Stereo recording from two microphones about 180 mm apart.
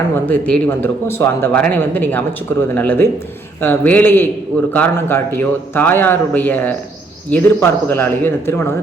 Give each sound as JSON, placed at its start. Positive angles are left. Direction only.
{"t": 0.3, "sound": "speech", "side_deg": 10}